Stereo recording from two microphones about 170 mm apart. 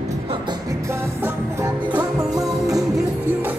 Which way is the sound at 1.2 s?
15° right (ahead or behind).